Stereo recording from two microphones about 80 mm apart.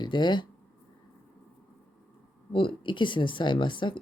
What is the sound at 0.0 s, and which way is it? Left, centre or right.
Speech, left.